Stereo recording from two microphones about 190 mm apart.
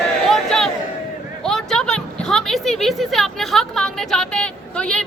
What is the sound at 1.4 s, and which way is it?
A woman's voice, 5° left (ahead or behind).